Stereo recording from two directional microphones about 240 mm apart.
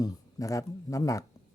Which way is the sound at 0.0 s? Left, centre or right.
Centre.